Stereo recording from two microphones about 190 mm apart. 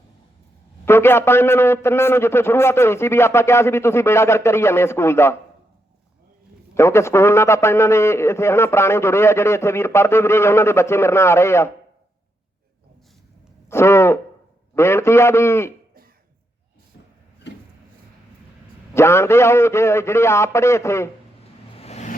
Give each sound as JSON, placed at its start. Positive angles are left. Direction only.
{"t": 0.9, "sound": "a man's voice", "side_deg": 10}
{"t": 6.7, "sound": "a man's voice", "side_deg": 15}
{"t": 13.7, "sound": "a sound", "side_deg": 15}
{"t": 14.8, "sound": "a man's voice", "side_deg": 15}
{"t": 17.5, "sound": "a sound", "side_deg": 65}
{"t": 18.9, "sound": "a man's voice", "side_deg": 15}
{"t": 21.8, "sound": "vehicle", "side_deg": 35}